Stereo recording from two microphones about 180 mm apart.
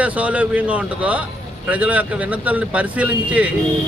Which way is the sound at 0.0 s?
10° right (ahead or behind).